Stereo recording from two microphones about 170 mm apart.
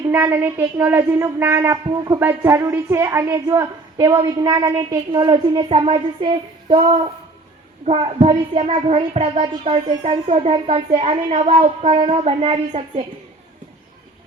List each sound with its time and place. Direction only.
0.0 s a woman's voice: 10° right (ahead or behind); by 13.1 s 40° right (ahead or behind)